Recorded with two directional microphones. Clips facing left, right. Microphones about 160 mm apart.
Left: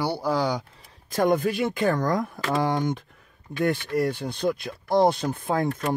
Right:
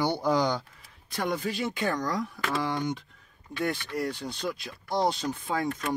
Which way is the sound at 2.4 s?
40° left (ahead or behind).